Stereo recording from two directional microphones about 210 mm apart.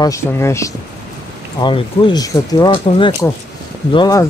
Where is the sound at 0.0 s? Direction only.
15° left (ahead or behind).